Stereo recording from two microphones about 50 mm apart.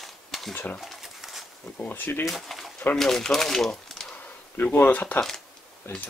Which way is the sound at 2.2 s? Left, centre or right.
Centre.